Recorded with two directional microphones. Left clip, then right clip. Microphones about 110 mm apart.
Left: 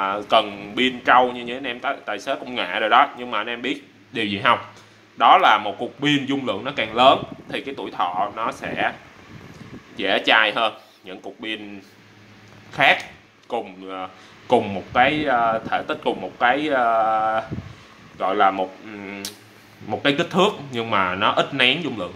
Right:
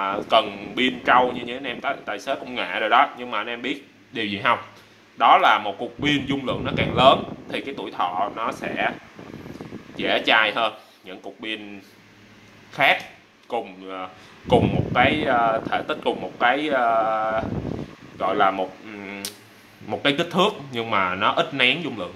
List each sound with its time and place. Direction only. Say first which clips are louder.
0.0 s a man's voice: left 1 dB; 10° right (ahead or behind)
9.9 s a man's voice: left 2 dB; 5° right (ahead or behind)
12.7 s speech: left 2 dB; 10° right (ahead or behind)